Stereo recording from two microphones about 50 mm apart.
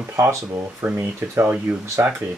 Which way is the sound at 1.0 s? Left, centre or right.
Right.